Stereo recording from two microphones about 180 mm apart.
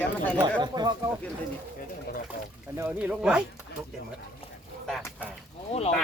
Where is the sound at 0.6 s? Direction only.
25° right (ahead or behind).